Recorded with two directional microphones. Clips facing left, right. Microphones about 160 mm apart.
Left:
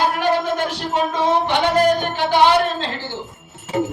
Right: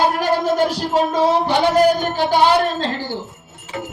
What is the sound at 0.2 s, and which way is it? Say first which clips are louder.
Music: right 2 dB; 35° right (ahead or behind).